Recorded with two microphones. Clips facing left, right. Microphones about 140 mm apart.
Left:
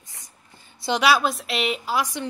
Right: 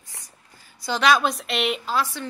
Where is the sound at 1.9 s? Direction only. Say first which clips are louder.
Even; 15° left (ahead or behind).